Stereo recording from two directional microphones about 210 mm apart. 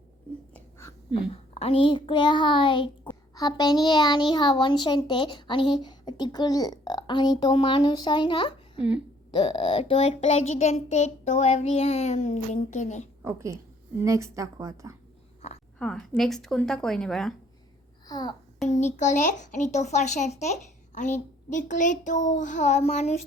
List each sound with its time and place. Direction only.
0.5 s a sound: 15° left (ahead or behind)
1.5 s a child's voice: 25° left (ahead or behind)
13.2 s a woman's voice: 15° right (ahead or behind)
15.4 s a sound: 30° left (ahead or behind)
15.8 s a woman's voice: 5° left (ahead or behind)
18.1 s a child's voice: 20° left (ahead or behind)
18.7 s a child's voice: 35° left (ahead or behind)